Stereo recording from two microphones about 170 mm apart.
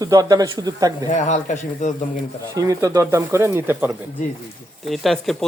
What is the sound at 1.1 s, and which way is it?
Speech, 45° left (ahead or behind).